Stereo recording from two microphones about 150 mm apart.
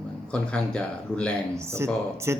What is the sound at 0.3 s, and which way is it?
A man's voice, 5° left (ahead or behind).